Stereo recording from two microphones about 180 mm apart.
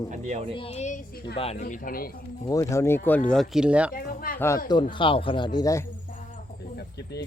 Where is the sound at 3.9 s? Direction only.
55° left (ahead or behind).